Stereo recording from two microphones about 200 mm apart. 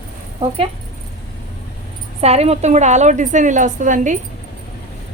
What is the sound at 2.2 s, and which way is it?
A woman's voice, 30° right (ahead or behind).